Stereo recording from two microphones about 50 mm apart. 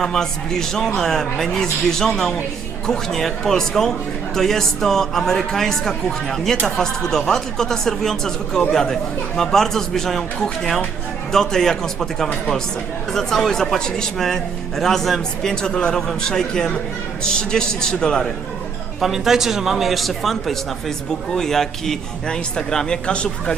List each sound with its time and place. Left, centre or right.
0.0 s speech: centre
15.6 s speech: centre
18.9 s a man's voice: centre